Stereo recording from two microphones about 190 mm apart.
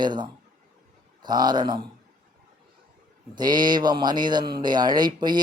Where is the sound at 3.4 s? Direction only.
20° right (ahead or behind).